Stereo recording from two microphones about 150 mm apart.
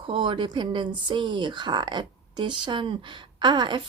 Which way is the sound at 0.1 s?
35° right (ahead or behind).